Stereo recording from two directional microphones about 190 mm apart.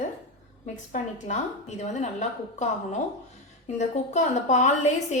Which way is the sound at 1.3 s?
35° left (ahead or behind).